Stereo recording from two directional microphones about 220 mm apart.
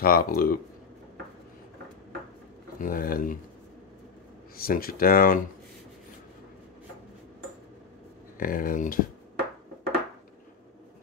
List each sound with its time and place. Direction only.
0.0 s speech: 40° left (ahead or behind)
2.8 s speech: 40° left (ahead or behind)
4.6 s speech: 40° left (ahead or behind)
8.4 s speech: 40° left (ahead or behind)